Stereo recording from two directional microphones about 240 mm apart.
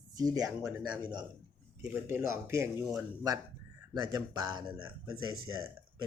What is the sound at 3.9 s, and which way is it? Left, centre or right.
Speech, centre.